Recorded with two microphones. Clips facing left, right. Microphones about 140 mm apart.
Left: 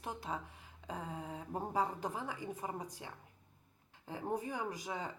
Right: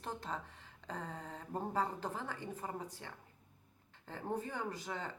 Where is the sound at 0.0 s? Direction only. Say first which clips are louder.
Left 1 dB; 10° left (ahead or behind).